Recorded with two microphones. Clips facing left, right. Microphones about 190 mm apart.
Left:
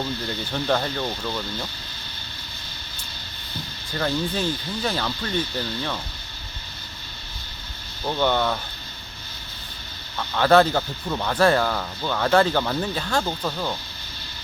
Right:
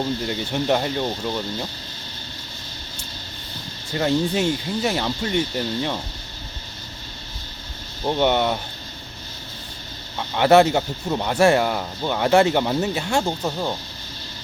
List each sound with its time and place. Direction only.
0.0 s speech: 20° right (ahead or behind)
3.9 s speech: 20° right (ahead or behind)
8.0 s speech: 20° right (ahead or behind)
10.2 s speech: 20° right (ahead or behind)